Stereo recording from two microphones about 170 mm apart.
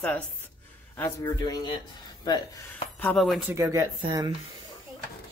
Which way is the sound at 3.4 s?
15° right (ahead or behind).